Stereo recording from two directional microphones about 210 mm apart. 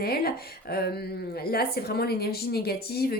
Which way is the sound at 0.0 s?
45° left (ahead or behind).